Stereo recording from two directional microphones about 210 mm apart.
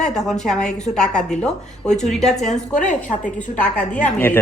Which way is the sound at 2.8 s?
35° left (ahead or behind).